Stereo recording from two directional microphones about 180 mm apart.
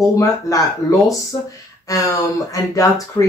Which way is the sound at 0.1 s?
20° left (ahead or behind).